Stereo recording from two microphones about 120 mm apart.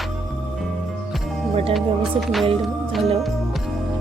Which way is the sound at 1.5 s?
50° right (ahead or behind).